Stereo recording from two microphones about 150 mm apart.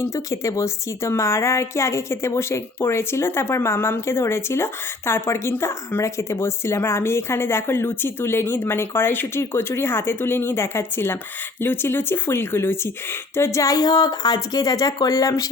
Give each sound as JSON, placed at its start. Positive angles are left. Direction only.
{"t": 0.0, "sound": "a woman's voice", "side_deg": 20}